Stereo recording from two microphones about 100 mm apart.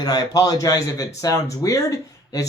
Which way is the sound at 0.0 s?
40° left (ahead or behind).